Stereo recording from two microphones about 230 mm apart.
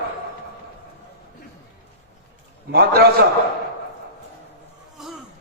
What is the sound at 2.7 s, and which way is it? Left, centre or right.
Speech, right.